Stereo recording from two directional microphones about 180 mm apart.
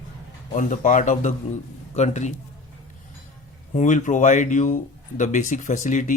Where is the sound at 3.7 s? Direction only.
45° left (ahead or behind).